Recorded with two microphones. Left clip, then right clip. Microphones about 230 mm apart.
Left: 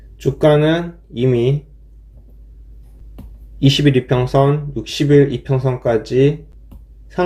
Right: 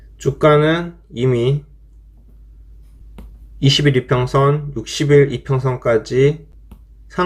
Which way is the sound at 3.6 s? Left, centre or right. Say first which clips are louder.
Left 1 dB; centre.